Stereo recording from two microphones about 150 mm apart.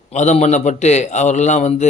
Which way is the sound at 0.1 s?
50° left (ahead or behind).